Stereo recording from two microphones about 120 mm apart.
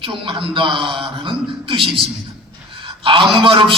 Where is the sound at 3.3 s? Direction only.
45° right (ahead or behind).